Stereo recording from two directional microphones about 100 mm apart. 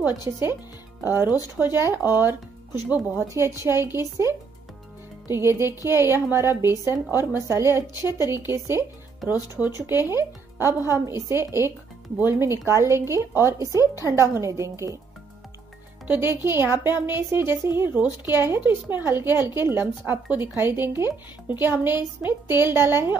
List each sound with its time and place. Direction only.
0.0 s speech: 25° right (ahead or behind)
10.0 s speech: 25° right (ahead or behind)
16.1 s speech: 20° right (ahead or behind)